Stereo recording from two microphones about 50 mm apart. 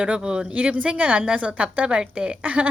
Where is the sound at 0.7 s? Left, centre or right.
Right.